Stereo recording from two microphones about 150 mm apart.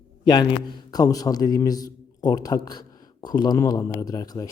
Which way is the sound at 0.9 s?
25° left (ahead or behind).